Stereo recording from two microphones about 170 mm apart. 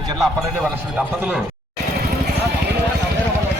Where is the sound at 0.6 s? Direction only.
10° right (ahead or behind).